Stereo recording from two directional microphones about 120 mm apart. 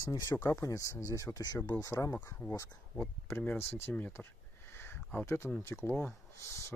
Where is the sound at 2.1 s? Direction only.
15° left (ahead or behind).